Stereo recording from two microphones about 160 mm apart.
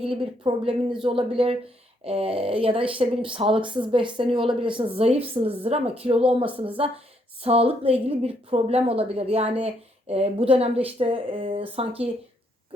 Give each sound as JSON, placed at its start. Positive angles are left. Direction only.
{"t": 0.0, "sound": "a woman's voice", "side_deg": -35}